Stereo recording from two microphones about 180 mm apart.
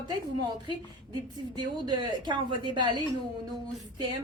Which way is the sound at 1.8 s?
25° right (ahead or behind).